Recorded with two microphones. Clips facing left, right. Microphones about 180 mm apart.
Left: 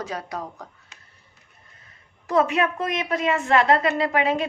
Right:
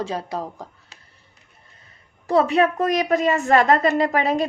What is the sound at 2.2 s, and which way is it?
A woman's voice, 35° right (ahead or behind).